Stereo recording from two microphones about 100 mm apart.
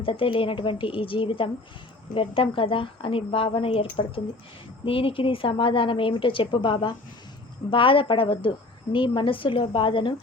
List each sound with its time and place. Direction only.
0.0 s a woman's voice: 60° left (ahead or behind)